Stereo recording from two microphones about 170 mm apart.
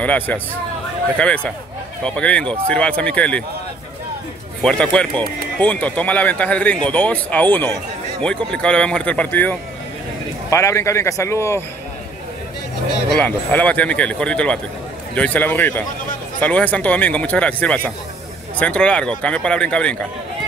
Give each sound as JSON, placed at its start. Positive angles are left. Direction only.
{"t": 0.0, "sound": "speech", "side_deg": 10}
{"t": 4.6, "sound": "speech", "side_deg": 5}
{"t": 13.2, "sound": "speech", "side_deg": 10}